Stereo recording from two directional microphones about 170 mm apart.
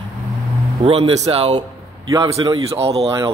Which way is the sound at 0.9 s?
35° right (ahead or behind).